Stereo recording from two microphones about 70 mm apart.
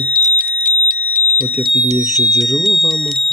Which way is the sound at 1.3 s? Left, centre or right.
Right.